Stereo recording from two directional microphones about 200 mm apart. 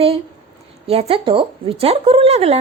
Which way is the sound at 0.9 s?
30° right (ahead or behind).